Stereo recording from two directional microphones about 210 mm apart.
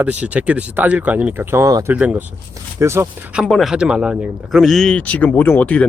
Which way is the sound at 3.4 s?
Centre (ahead or behind).